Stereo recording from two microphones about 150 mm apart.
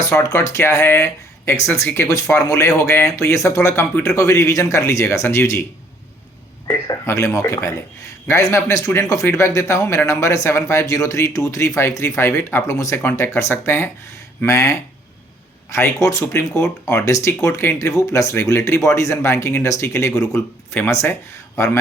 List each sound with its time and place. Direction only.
0.0 s speech: 20° left (ahead or behind)
6.7 s speech: 20° left (ahead or behind)